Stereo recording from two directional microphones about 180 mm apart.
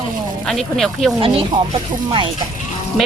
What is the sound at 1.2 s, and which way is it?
Speech, 30° right (ahead or behind).